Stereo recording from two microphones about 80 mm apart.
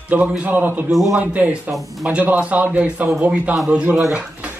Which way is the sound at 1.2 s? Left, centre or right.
Centre.